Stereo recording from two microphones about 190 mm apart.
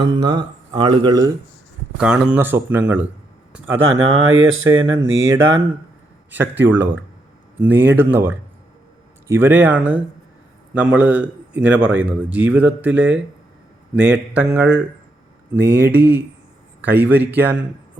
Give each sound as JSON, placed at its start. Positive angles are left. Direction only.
{"t": 0.0, "sound": "speech", "side_deg": -25}
{"t": 2.0, "sound": "a man's voice", "side_deg": -5}
{"t": 4.0, "sound": "speech", "side_deg": -90}
{"t": 6.3, "sound": "a man's voice", "side_deg": -10}
{"t": 15.5, "sound": "speech", "side_deg": -60}
{"t": 16.8, "sound": "a man's voice", "side_deg": -10}